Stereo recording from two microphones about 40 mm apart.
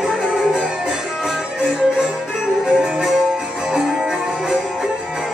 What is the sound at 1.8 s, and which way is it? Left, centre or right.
Music, centre.